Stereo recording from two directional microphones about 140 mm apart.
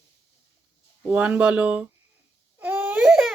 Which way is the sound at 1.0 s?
10° right (ahead or behind).